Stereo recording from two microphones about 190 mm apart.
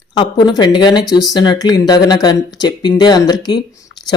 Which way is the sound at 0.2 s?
20° left (ahead or behind).